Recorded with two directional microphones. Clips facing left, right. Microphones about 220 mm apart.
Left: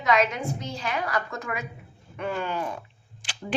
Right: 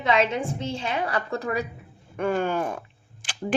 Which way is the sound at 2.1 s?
50° right (ahead or behind).